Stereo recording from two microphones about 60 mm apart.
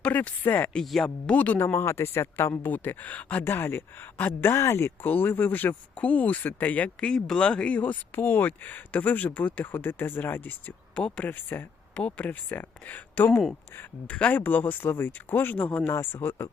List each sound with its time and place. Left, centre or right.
0.0 s speech: left
0.8 s speech: centre
1.3 s speech: left
1.5 s speech: left
3.4 s speech: left
5.0 s speech: left
7.0 s speech: centre
7.7 s speech: left
10.9 s speech: left
11.3 s speech: left
11.9 s speech: left
14.1 s speech: left